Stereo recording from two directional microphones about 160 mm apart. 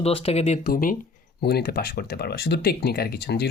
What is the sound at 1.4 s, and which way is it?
Speech, 80° left.